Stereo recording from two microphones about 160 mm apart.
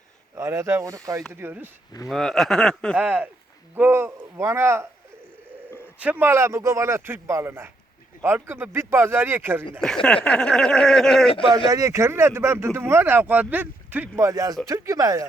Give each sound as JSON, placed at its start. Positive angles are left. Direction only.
{"t": 0.3, "sound": "speech", "side_deg": -20}
{"t": 2.0, "sound": "a sound", "side_deg": 0}
{"t": 3.0, "sound": "speech", "side_deg": -10}
{"t": 6.0, "sound": "speech", "side_deg": -10}
{"t": 9.8, "sound": "a sound", "side_deg": 5}
{"t": 11.7, "sound": "speech", "side_deg": -20}